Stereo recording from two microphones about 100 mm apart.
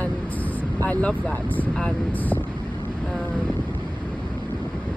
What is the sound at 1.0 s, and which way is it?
Speech, 15° left (ahead or behind).